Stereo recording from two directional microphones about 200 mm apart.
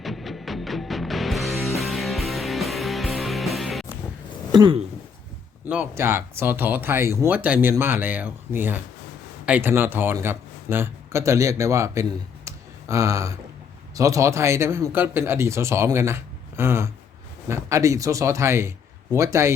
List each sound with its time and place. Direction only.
0.0 s music: centre (ahead or behind)
4.5 s speech: 25° right (ahead or behind)
5.6 s speech: 10° right (ahead or behind)
12.5 s a sound: 15° right (ahead or behind)
13.9 s speech: 15° right (ahead or behind)